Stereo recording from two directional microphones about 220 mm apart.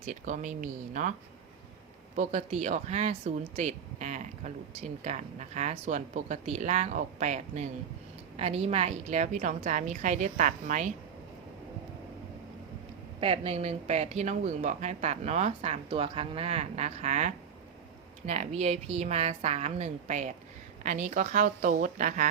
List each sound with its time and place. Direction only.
0.0 s speech: 35° right (ahead or behind)
2.1 s speech: 30° right (ahead or behind)
13.1 s speech: 25° right (ahead or behind)